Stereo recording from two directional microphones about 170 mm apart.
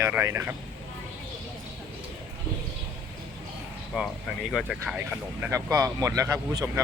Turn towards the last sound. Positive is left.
turn(degrees=-15)  # may be behind; listen again after turning